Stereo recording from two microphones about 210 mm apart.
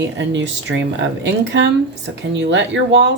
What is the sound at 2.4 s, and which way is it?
Speech, 60° right (ahead or behind).